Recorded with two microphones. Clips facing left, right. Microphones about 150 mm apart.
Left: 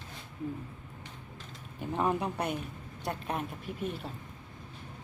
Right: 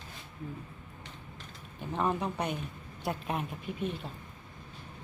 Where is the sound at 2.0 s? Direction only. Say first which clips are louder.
Left 1 dB; 5° left (ahead or behind).